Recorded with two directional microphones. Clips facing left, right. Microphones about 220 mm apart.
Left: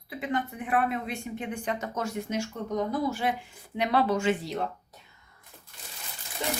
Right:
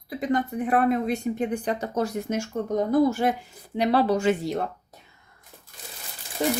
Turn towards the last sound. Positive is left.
turn(degrees=-45)  # may be behind; listen again after turning